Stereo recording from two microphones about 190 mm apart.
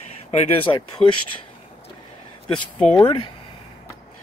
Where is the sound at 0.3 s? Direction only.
30° left (ahead or behind).